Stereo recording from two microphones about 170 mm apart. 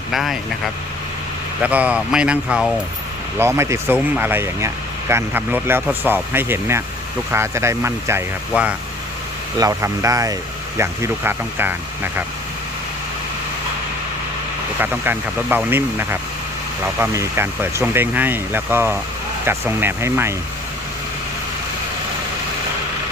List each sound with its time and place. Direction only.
0.1 s speech: centre (ahead or behind)
1.6 s speech: 10° right (ahead or behind)
14.8 s speech: 10° right (ahead or behind)